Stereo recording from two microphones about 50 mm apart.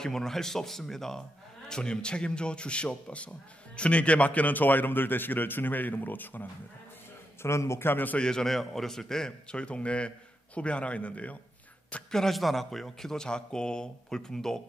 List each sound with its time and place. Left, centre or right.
0.0 s a man's voice: centre; by 6.5 s left
7.4 s a man's voice: left
7.9 s a man's voice: left
8.2 s a man's voice: centre
12.1 s a man's voice: centre